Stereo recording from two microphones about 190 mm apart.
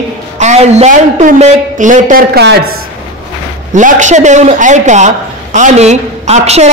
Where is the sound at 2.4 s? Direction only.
60° right (ahead or behind).